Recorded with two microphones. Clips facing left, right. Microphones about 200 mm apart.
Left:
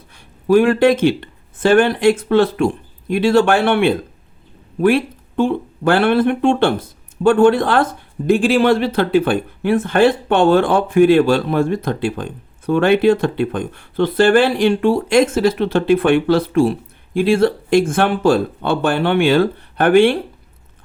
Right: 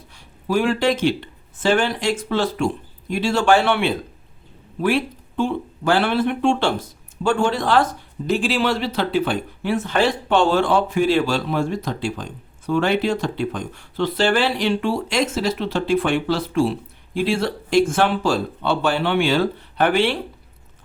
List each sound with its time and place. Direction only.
0.4 s speech: 55° left (ahead or behind)